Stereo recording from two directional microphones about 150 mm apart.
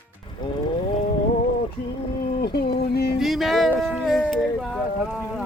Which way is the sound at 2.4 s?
90° left.